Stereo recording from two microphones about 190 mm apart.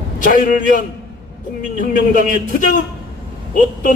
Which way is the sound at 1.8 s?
45° left (ahead or behind).